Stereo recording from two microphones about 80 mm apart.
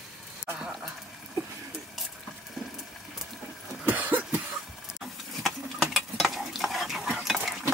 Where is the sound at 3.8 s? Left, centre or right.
Right.